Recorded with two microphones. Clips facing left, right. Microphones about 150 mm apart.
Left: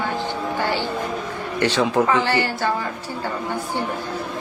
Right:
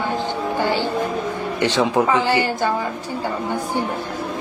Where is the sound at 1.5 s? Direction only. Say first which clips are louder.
Even; 15° right (ahead or behind).